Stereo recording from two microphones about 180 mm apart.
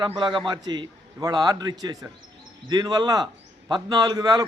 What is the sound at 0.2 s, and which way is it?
A man's voice, 25° right (ahead or behind).